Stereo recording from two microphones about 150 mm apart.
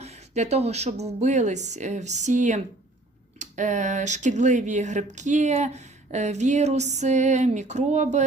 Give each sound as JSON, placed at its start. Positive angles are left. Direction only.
{"t": 0.0, "sound": "speech", "side_deg": -45}